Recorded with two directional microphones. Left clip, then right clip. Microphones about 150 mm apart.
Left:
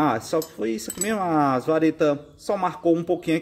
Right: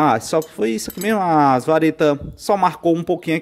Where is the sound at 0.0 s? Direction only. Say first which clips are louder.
Right 6 dB; 35° right (ahead or behind).